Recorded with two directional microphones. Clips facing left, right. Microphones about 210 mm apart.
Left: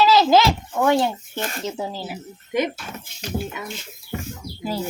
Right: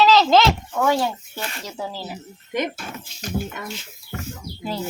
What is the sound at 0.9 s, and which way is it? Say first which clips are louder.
Speech: left 2 dB; 20° left (ahead or behind).